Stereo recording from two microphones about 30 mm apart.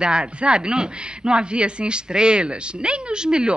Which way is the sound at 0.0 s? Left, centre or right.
Right.